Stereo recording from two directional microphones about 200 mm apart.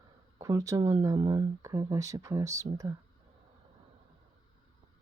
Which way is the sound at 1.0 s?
20° right (ahead or behind).